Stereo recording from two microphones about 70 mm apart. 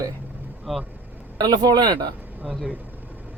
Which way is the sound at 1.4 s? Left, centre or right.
Right.